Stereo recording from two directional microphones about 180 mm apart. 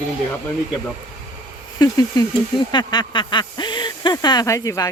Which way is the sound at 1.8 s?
20° left (ahead or behind).